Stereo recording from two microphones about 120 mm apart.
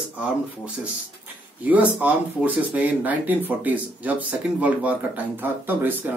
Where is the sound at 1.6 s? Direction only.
15° right (ahead or behind).